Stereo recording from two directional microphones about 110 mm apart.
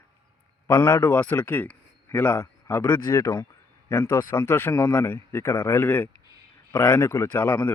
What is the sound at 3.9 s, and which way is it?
Speech, 20° left (ahead or behind).